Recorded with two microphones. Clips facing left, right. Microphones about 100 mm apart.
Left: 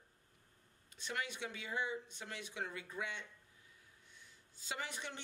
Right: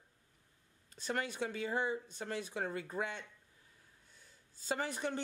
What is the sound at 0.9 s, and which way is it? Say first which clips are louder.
Speech: right 6 dB; 40° right (ahead or behind).